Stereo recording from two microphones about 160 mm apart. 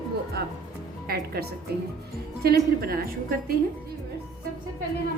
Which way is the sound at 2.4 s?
75° right (ahead or behind).